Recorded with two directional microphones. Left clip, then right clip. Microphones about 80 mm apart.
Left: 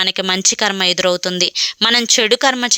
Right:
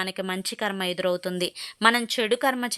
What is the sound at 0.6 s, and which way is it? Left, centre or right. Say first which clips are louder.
Speech: left 8 dB; left.